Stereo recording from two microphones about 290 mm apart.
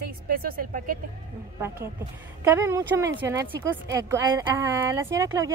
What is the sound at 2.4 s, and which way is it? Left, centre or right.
Speech, centre.